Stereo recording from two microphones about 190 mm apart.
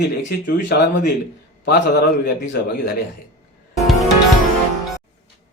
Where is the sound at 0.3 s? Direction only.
50° left (ahead or behind).